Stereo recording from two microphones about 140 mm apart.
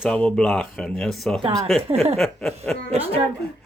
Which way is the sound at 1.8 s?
45° right (ahead or behind).